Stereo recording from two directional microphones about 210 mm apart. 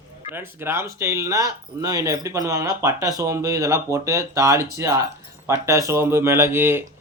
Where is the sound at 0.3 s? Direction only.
10° right (ahead or behind).